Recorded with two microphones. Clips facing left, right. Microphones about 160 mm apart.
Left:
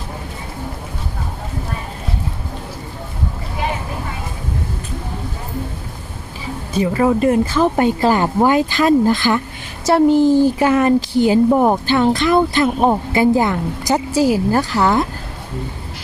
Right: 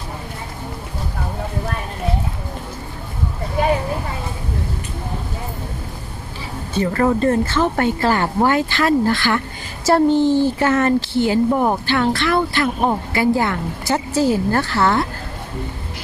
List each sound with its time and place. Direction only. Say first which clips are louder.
6.7 s speech: left 2 dB; 10° left (ahead or behind)
9.8 s speech: left 2 dB; 5° left (ahead or behind)